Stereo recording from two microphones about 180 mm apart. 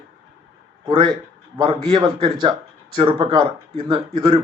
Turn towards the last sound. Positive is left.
turn(degrees=-30)  # may be behind; listen again after turning